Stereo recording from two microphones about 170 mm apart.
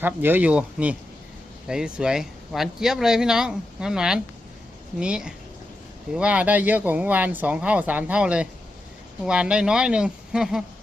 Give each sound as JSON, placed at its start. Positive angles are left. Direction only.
{"t": 0.0, "sound": "speech", "side_deg": -10}